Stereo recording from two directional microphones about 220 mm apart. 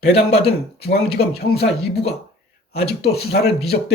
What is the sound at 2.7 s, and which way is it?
Speech, 45° left (ahead or behind).